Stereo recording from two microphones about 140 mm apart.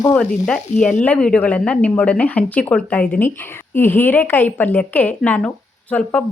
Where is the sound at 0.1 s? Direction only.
5° left (ahead or behind).